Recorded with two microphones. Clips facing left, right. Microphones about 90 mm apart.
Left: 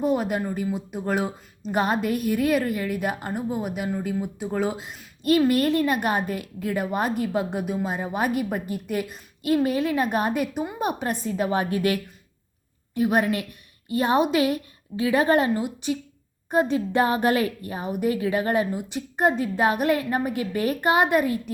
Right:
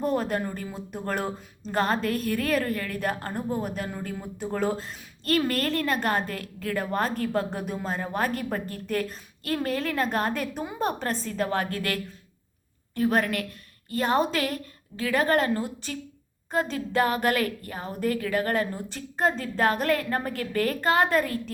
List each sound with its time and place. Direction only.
0.0 s speech: 10° left (ahead or behind)